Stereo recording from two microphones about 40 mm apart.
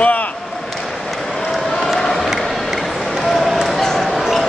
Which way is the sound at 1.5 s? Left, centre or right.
Centre.